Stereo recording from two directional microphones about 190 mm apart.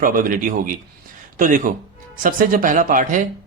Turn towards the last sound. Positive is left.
turn(degrees=-45)  # may be behind; listen again after turning